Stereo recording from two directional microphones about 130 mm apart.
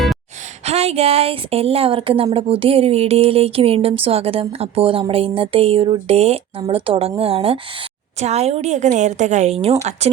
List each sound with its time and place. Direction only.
0.6 s a woman's voice: 55° right (ahead or behind)